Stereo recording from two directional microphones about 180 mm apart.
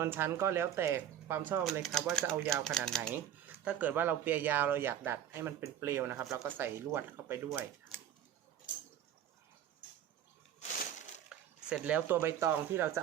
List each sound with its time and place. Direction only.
0.0 s speech: 15° right (ahead or behind)
1.8 s speech: centre (ahead or behind)
3.1 s speech: 10° right (ahead or behind)
10.6 s crushing: 40° left (ahead or behind)
11.3 s speech: 5° right (ahead or behind)